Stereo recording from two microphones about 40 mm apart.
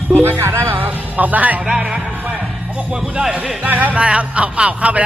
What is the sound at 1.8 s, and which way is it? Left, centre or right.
Speech, right.